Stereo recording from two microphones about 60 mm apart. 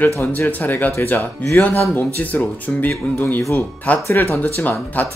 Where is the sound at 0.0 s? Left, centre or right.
Left.